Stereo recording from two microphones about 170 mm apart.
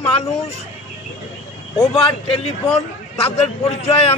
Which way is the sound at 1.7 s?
35° left (ahead or behind).